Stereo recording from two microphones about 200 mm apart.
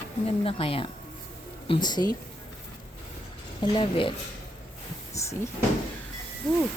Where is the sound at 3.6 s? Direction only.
25° left (ahead or behind).